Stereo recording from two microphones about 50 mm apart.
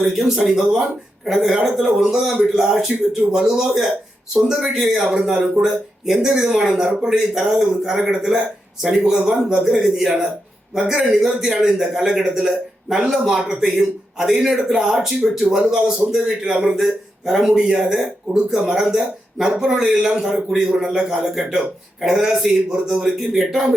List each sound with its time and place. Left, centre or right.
0.0 s a man's voice: centre
9.8 s a man's voice: centre